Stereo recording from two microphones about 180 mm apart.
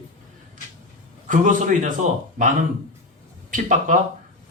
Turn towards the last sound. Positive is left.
turn(degrees=-45)  # may be behind; listen again after turning